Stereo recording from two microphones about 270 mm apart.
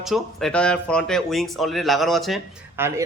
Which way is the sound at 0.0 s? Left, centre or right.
Centre.